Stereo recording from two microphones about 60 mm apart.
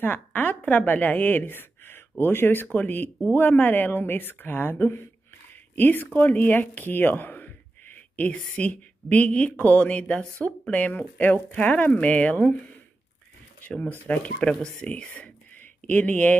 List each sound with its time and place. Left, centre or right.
0.0 s a woman's voice: left
13.8 s speech: left
14.4 s speech: centre